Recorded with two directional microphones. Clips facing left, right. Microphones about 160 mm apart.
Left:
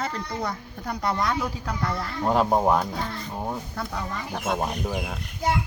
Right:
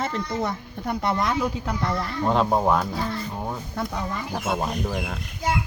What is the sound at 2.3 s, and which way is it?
Speech, 10° left (ahead or behind).